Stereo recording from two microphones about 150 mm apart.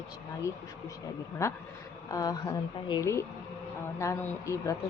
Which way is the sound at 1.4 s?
20° left (ahead or behind).